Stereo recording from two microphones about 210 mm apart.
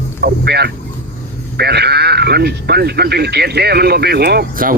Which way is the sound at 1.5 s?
50° right (ahead or behind).